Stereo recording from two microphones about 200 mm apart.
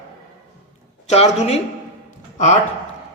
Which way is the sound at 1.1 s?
30° left (ahead or behind).